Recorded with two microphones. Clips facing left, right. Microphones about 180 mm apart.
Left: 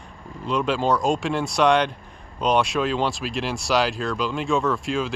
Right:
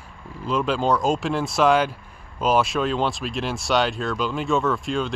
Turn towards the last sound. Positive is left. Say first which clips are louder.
# even
turn(degrees=0)  # may be behind; listen again after turning